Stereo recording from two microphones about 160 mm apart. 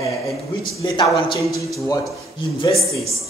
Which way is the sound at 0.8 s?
30° left (ahead or behind).